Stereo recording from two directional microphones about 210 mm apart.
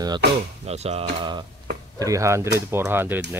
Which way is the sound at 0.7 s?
30° right (ahead or behind).